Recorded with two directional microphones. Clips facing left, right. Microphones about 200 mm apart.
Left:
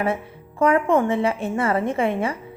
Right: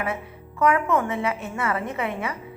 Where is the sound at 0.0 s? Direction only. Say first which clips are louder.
Left 5 dB; 30° left (ahead or behind).